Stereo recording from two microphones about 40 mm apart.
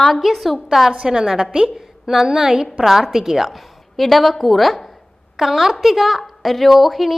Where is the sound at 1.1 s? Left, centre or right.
Right.